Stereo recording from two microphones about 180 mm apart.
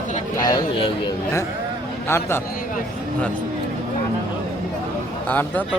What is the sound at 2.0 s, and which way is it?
Speech, 15° left (ahead or behind).